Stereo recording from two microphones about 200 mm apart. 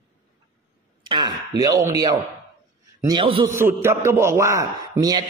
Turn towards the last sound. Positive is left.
turn(degrees=-20)  # may be behind; listen again after turning